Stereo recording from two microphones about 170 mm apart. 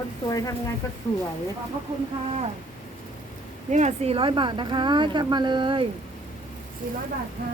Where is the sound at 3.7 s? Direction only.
40° right (ahead or behind).